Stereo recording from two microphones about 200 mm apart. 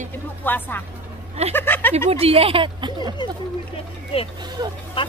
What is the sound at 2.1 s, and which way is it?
Speech, 30° right (ahead or behind).